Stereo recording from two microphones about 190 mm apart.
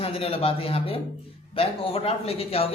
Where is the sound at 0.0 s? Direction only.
30° left (ahead or behind).